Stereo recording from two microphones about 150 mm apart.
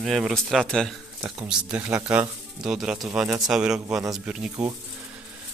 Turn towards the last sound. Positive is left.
turn(degrees=-5)  # may be behind; listen again after turning